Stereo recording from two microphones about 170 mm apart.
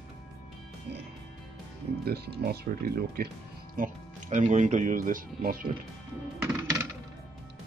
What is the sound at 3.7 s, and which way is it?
Speech, 50° right (ahead or behind).